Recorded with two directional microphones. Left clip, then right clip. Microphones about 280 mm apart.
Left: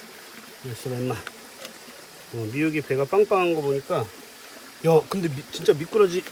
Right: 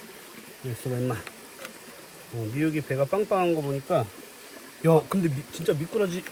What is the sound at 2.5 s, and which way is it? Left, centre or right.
Speech, left.